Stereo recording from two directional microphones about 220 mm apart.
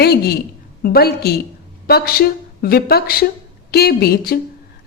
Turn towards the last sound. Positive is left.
turn(degrees=45)  # may be behind; listen again after turning